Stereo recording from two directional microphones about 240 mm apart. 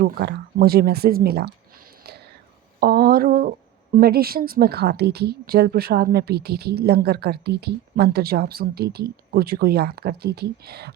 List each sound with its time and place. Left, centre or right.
0.0 s a woman's voice: right